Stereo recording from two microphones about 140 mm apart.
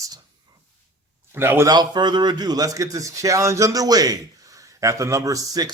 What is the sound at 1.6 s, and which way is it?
Speech, 30° right (ahead or behind).